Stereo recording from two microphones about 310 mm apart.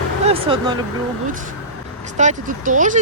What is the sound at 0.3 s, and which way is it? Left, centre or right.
Speech, centre.